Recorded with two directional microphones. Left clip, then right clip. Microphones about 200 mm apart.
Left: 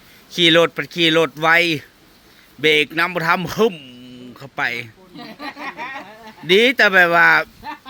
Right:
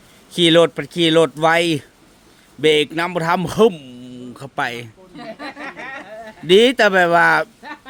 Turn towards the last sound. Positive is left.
turn(degrees=-20)  # may be behind; listen again after turning